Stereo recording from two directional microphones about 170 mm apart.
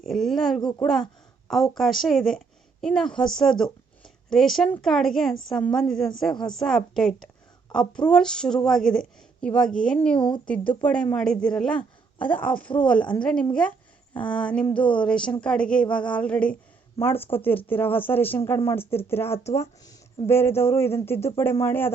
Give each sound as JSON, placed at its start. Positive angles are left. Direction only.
{"t": 0.0, "sound": "a woman's voice", "side_deg": 0}
{"t": 10.2, "sound": "speech", "side_deg": 30}
{"t": 10.8, "sound": "a woman's voice", "side_deg": 5}